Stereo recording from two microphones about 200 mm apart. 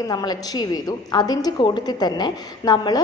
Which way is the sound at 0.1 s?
20° left (ahead or behind).